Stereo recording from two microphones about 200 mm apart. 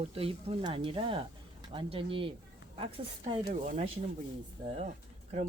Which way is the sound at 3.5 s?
35° right (ahead or behind).